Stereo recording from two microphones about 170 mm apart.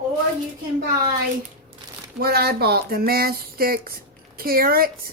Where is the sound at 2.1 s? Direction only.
65° right (ahead or behind).